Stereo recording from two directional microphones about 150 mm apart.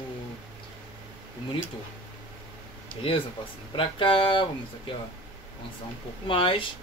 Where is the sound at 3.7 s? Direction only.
35° left (ahead or behind).